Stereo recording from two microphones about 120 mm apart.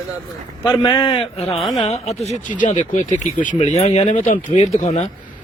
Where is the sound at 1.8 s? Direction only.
60° left (ahead or behind).